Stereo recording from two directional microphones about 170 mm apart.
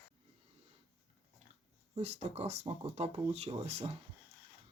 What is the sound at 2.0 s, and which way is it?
Speech, 40° right (ahead or behind).